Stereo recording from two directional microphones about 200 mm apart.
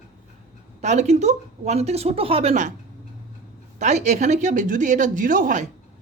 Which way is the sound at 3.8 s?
35° right (ahead or behind).